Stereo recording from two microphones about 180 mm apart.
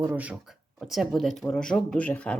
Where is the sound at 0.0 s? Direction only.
10° right (ahead or behind).